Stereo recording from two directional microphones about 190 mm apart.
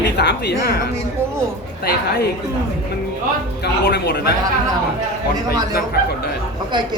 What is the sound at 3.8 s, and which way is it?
Speech, 55° left (ahead or behind).